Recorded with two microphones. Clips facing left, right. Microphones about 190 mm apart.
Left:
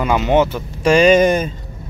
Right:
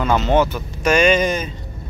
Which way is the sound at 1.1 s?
50° left (ahead or behind).